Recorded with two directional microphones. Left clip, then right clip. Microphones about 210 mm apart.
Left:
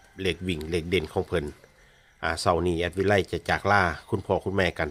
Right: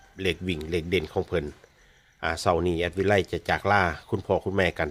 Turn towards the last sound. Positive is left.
turn(degrees=0)  # may be behind; listen again after turning